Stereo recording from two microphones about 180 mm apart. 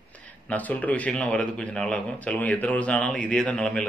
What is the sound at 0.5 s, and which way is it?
Speech, 10° left (ahead or behind).